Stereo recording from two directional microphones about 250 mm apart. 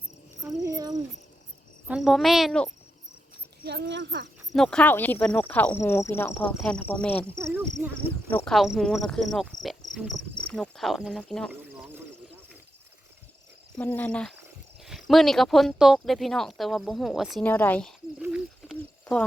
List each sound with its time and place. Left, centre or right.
0.6 s speech: centre
1.9 s speech: centre
3.6 s a child's voice: right
4.5 s speech: centre
7.3 s speech: centre
8.3 s speech: centre
9.6 s cricket: centre
11.5 s a sound: centre
13.7 s speech: centre